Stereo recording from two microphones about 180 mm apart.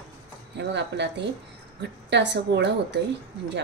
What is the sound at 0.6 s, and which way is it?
Speech, 70° right (ahead or behind).